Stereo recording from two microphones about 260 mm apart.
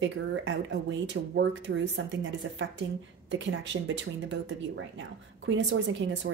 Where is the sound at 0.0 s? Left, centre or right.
Right.